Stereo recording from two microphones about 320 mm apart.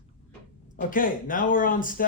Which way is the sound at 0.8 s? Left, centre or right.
Left.